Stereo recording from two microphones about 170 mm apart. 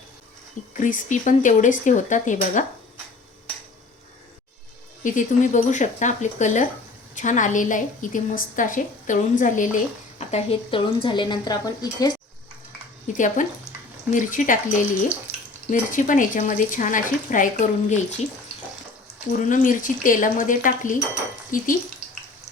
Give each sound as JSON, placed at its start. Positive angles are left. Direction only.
{"t": 0.7, "sound": "a woman's voice", "side_deg": 50}
{"t": 5.0, "sound": "a woman's voice", "side_deg": 50}
{"t": 13.1, "sound": "a woman's voice", "side_deg": 50}
{"t": 19.3, "sound": "a woman's voice", "side_deg": 50}